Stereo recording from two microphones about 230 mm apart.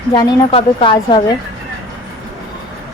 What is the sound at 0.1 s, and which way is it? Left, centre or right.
Speech, centre.